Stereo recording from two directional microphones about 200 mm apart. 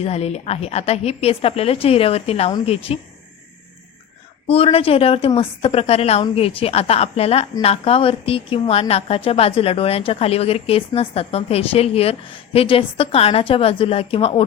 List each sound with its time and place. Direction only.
0.0 s a woman's voice: 30° left (ahead or behind)
4.4 s a woman's voice: 30° left (ahead or behind)